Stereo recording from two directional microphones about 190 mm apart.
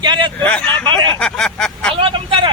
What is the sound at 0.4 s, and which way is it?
Speech, 5° left (ahead or behind).